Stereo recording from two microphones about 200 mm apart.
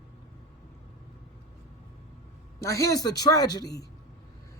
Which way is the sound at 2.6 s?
15° left (ahead or behind).